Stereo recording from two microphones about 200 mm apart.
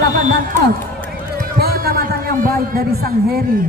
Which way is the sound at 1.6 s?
50° right (ahead or behind).